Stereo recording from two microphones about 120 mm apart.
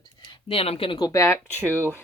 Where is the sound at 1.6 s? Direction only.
20° right (ahead or behind).